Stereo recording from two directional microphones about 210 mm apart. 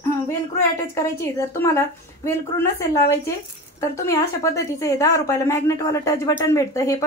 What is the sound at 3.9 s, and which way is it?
A woman's voice, 15° left (ahead or behind).